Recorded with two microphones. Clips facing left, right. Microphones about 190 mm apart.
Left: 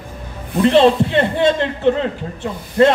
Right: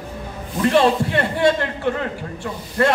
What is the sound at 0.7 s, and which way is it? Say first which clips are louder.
A man's voice: left 4 dB; 20° left (ahead or behind).